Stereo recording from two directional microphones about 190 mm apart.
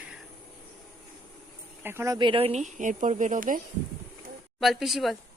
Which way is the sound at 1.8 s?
10° right (ahead or behind).